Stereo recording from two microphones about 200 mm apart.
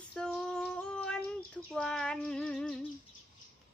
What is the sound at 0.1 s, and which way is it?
Female singing, centre (ahead or behind).